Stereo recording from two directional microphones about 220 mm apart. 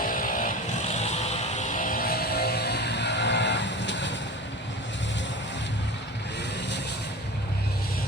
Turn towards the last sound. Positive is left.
turn(degrees=50)  # may be behind; listen again after turning